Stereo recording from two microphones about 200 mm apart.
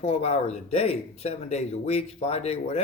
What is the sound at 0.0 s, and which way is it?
Speech, 35° left (ahead or behind).